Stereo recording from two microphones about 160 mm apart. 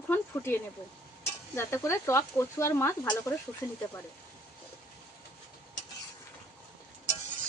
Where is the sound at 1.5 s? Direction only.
15° left (ahead or behind).